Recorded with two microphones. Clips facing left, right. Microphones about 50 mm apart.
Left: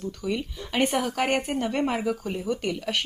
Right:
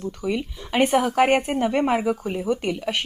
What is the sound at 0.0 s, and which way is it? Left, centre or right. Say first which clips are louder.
Speech: right 3 dB; centre.